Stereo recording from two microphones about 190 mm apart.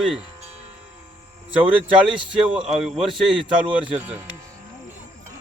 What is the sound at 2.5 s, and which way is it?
Speech, 5° right (ahead or behind).